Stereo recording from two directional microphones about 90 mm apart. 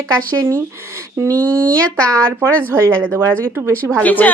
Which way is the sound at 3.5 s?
20° right (ahead or behind).